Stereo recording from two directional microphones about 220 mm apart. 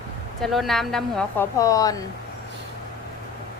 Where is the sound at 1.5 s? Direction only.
15° left (ahead or behind).